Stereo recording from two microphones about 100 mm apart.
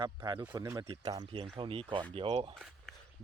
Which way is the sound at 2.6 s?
Centre (ahead or behind).